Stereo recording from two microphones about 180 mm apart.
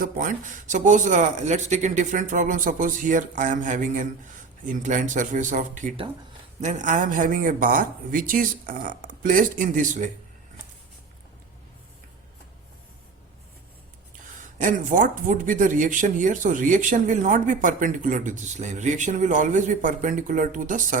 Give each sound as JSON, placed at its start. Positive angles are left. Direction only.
{"t": 0.0, "sound": "speech", "side_deg": -45}
{"t": 14.6, "sound": "speech", "side_deg": -45}